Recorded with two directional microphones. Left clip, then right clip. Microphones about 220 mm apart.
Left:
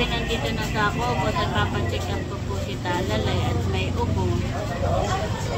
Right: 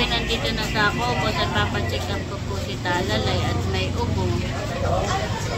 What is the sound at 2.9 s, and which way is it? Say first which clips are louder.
Vehicle: right 2 dB; 5° right (ahead or behind).